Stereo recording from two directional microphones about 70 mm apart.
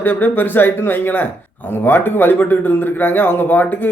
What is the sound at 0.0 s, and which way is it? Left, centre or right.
A man's voice, left.